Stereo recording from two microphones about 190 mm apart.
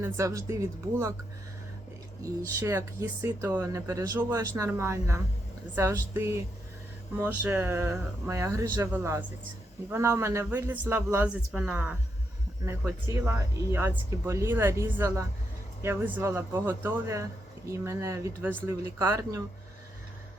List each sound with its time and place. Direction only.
0.0 s speech: 15° right (ahead or behind)
2.2 s speech: 15° right (ahead or behind)